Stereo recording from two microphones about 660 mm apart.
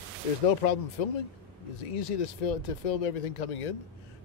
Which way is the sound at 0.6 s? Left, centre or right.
Left.